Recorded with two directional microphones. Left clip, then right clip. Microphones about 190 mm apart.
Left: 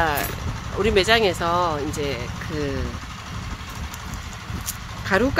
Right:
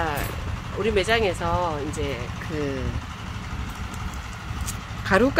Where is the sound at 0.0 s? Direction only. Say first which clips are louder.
Left 5 dB; 30° left (ahead or behind).